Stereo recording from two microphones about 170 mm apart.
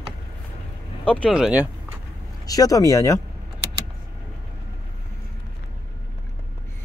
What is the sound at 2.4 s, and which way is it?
Speech, 20° left (ahead or behind).